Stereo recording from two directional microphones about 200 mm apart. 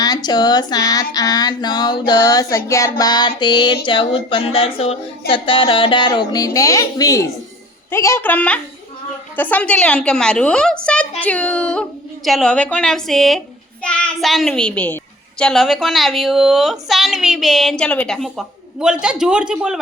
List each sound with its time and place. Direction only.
0.0 s female singing: 20° left (ahead or behind)
7.9 s a woman's voice: 15° left (ahead or behind); by 19.8 s 5° right (ahead or behind)